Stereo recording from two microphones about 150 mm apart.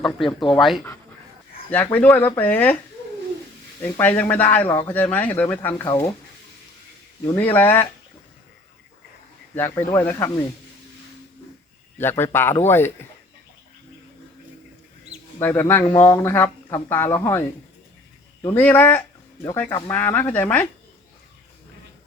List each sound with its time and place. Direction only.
0.3 s speech: 30° left (ahead or behind)
1.7 s speech: 10° left (ahead or behind)
3.8 s speech: 15° left (ahead or behind)
7.3 s speech: 10° left (ahead or behind)
9.6 s speech: 15° left (ahead or behind)
11.9 s speech: 15° left (ahead or behind)
15.4 s speech: 15° left (ahead or behind)
18.4 s speech: 15° left (ahead or behind)